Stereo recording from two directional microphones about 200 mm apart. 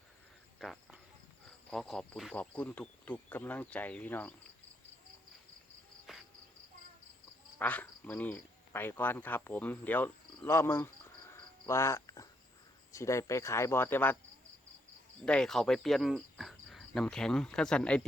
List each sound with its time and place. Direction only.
0.6 s speech: centre (ahead or behind)
6.1 s cricket: centre (ahead or behind)
7.6 s speech: 10° left (ahead or behind)
15.2 s speech: 5° left (ahead or behind)